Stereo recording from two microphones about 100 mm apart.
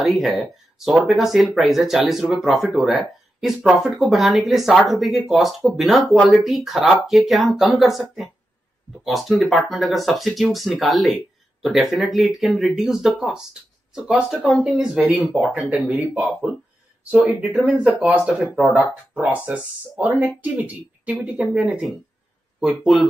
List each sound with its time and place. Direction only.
0.0 s speech: 5° right (ahead or behind)
15.1 s speech: 15° right (ahead or behind)
17.0 s speech: 10° right (ahead or behind)